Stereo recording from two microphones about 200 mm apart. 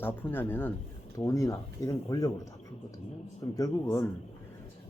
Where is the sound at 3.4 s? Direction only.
15° left (ahead or behind).